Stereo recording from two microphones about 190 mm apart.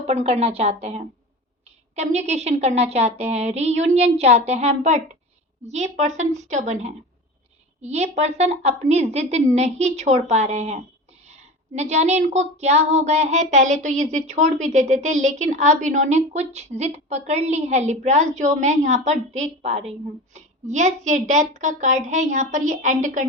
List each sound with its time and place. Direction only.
0.1 s speech: 35° right (ahead or behind)